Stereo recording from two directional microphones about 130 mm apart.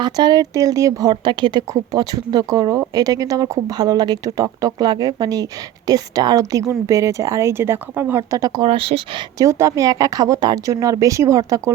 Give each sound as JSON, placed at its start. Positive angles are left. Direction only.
{"t": 0.0, "sound": "speech", "side_deg": -35}
{"t": 8.6, "sound": "speech", "side_deg": -45}
{"t": 9.4, "sound": "speech", "side_deg": -25}